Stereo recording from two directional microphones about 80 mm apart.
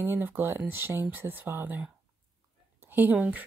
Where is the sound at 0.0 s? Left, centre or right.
Right.